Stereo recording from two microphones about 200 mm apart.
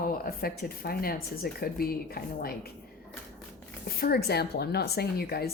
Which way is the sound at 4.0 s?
50° left (ahead or behind).